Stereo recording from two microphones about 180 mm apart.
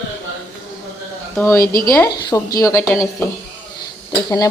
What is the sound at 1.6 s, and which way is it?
Speech, 55° left (ahead or behind).